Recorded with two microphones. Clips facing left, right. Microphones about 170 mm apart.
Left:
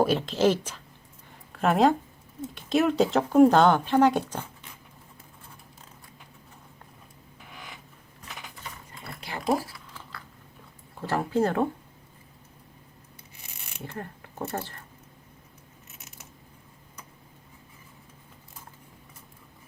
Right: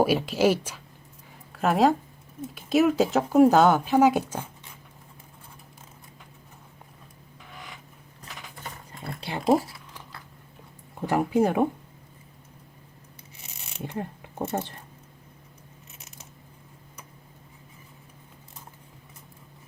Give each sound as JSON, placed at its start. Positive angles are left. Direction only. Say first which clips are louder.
{"t": 0.0, "sound": "speech", "louder": "right 1 dB", "side_deg": -10}
{"t": 1.3, "sound": "a sound", "louder": "even", "side_deg": 0}
{"t": 2.6, "sound": "speech", "louder": "right 2 dB", "side_deg": -5}
{"t": 9.2, "sound": "speech", "louder": "right 5 dB", "side_deg": -25}
{"t": 9.9, "sound": "biting", "louder": "even", "side_deg": -15}
{"t": 10.9, "sound": "speech", "louder": "right 3 dB", "side_deg": -15}
{"t": 13.7, "sound": "speech", "louder": "right 5 dB", "side_deg": -20}